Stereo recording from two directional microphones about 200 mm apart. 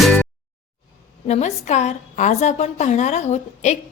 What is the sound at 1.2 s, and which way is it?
A woman's voice, 35° left (ahead or behind).